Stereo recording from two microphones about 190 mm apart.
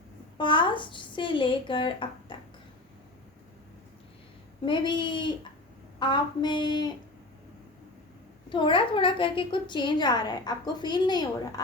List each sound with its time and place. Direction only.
0.3 s a woman's voice: 25° left (ahead or behind)
2.3 s a sound: 25° left (ahead or behind)
4.6 s a woman's voice: 25° left (ahead or behind)
8.4 s a woman's voice: 25° left (ahead or behind)